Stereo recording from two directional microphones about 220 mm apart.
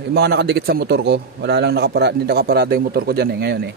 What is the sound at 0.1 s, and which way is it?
Speech, 45° right (ahead or behind).